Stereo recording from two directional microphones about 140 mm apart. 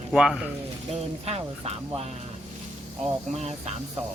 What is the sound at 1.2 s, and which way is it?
Speech, 45° right (ahead or behind).